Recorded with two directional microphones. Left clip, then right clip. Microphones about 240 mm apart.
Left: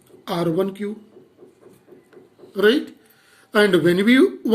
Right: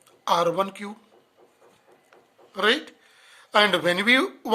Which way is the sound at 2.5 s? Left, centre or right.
Right.